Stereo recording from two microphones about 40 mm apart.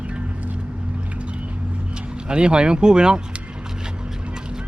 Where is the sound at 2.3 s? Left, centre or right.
Right.